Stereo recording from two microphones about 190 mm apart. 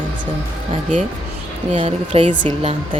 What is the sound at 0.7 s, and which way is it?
Speech, 40° right (ahead or behind).